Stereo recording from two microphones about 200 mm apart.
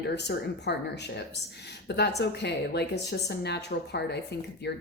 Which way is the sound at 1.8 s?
55° left (ahead or behind).